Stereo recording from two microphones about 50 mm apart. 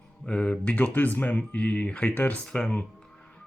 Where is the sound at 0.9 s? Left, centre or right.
Left.